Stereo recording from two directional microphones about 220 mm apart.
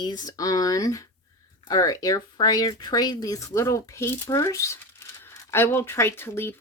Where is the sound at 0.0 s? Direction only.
20° left (ahead or behind).